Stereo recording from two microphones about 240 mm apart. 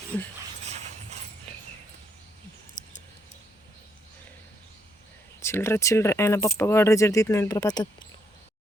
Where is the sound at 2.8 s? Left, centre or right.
Centre.